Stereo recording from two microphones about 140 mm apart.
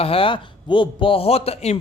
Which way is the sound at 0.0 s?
40° left (ahead or behind).